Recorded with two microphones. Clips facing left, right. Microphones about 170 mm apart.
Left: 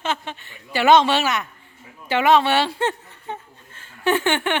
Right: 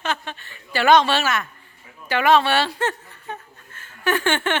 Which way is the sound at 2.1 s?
20° left (ahead or behind).